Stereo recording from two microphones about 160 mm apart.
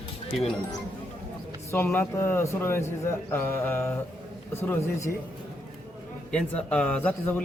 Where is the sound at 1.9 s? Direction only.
15° left (ahead or behind).